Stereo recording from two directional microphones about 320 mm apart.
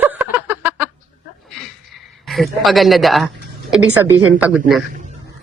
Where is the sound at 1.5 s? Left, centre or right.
Centre.